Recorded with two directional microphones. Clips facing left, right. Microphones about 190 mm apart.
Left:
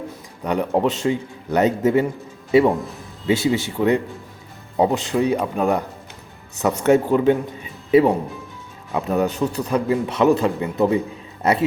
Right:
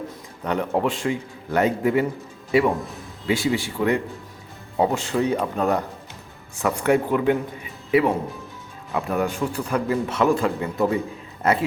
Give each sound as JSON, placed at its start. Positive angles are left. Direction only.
{"t": 0.4, "sound": "a man's voice", "side_deg": 15}
{"t": 6.8, "sound": "a man's voice", "side_deg": 25}